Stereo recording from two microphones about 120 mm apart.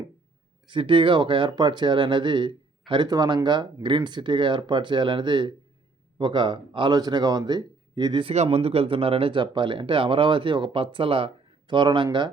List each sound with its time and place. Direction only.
0.7 s speech: 45° right (ahead or behind)
8.3 s speech: 60° right (ahead or behind); by 12.0 s 40° right (ahead or behind)